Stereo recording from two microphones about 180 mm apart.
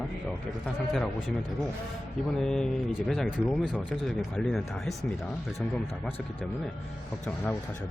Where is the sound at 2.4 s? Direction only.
5° left (ahead or behind).